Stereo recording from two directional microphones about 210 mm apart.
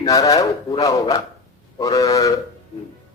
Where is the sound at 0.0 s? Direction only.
15° left (ahead or behind).